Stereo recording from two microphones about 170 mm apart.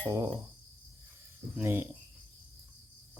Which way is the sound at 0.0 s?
15° right (ahead or behind).